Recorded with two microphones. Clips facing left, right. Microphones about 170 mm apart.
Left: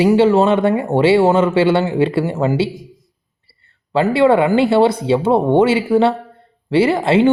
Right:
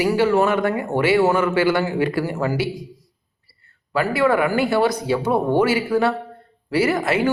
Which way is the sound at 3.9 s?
25° left (ahead or behind).